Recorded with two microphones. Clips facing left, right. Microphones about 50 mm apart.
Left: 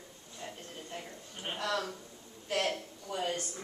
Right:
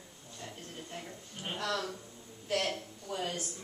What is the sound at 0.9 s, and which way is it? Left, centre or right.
A woman's voice, centre.